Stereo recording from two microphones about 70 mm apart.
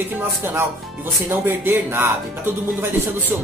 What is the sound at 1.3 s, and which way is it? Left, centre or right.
Speech, right.